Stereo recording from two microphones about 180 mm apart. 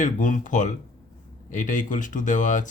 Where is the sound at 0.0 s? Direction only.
45° left (ahead or behind).